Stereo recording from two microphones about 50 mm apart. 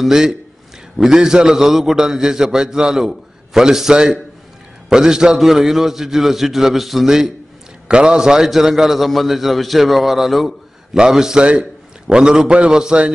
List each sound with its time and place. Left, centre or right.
0.0 s a man's voice: centre
7.9 s a man's voice: centre